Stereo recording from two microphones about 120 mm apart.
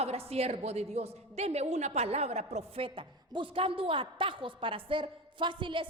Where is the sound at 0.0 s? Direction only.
55° right (ahead or behind).